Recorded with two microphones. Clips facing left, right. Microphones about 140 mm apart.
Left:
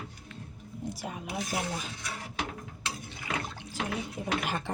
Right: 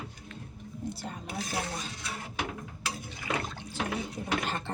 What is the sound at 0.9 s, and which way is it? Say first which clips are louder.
Speech: left 2 dB; 10° left (ahead or behind).